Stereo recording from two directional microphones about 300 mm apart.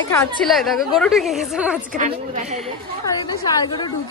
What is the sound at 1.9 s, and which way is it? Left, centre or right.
Speech, right.